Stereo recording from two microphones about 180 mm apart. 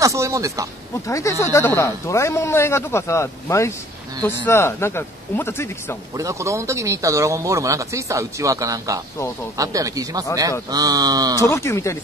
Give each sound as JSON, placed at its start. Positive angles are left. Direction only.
{"t": 0.0, "sound": "speech", "side_deg": -15}
{"t": 1.0, "sound": "speech", "side_deg": 15}
{"t": 6.1, "sound": "speech", "side_deg": -15}
{"t": 11.4, "sound": "speech", "side_deg": 15}